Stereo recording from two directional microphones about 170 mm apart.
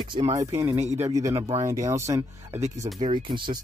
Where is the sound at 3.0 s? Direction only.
30° right (ahead or behind).